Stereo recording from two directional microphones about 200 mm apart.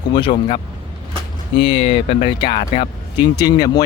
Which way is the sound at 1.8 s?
30° left (ahead or behind).